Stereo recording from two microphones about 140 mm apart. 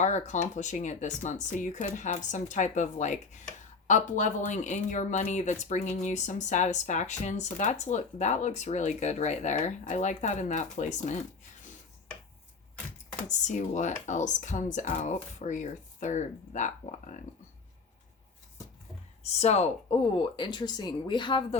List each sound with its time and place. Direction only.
0.0 s speech: 60° left (ahead or behind)
13.2 s speech: 60° left (ahead or behind)
19.2 s speech: 50° left (ahead or behind); by 21.4 s 35° left (ahead or behind)